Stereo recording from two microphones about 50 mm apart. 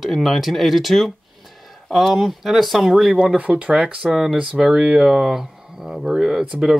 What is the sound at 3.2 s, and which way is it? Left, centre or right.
Speech, right.